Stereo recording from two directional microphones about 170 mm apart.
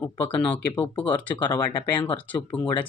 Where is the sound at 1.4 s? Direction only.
30° left (ahead or behind).